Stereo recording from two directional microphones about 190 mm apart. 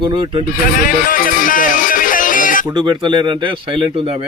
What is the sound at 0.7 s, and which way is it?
Speech, 45° left (ahead or behind).